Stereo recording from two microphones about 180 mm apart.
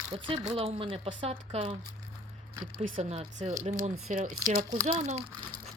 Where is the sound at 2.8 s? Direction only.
45° right (ahead or behind).